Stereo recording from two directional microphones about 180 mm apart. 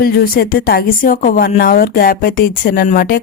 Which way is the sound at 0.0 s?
55° left (ahead or behind).